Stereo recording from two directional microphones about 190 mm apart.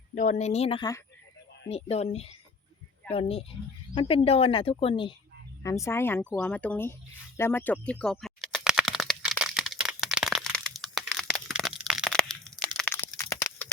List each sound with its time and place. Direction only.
0.2 s speech: 40° left (ahead or behind); by 1.0 s 20° left (ahead or behind)
1.7 s speech: 35° left (ahead or behind)
5.6 s speech: 15° left (ahead or behind)
7.3 s a sound: 10° left (ahead or behind)